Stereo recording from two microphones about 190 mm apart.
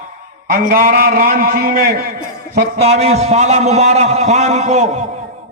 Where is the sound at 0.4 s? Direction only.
45° right (ahead or behind).